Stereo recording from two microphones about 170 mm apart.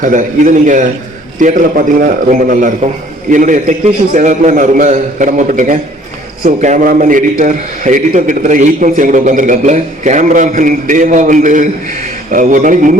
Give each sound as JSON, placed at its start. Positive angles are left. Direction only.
{"t": 0.0, "sound": "a man's voice", "side_deg": -50}